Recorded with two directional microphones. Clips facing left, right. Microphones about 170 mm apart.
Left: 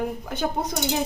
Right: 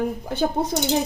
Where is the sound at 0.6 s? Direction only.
30° right (ahead or behind).